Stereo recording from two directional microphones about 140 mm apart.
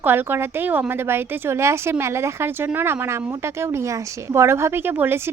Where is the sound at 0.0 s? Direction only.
15° right (ahead or behind).